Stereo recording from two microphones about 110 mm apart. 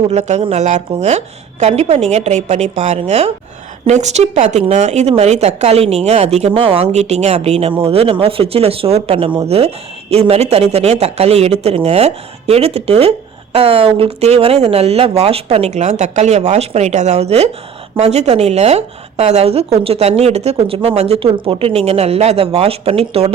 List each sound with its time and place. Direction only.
0.1 s a woman's voice: 90° right
3.8 s speech: 90° right
7.3 s speech: 70° right (ahead or behind)
9.5 s speech: 70° right (ahead or behind)
21.4 s speech: 55° right (ahead or behind)